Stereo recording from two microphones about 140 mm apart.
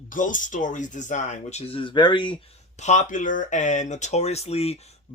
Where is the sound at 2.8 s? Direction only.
60° left (ahead or behind).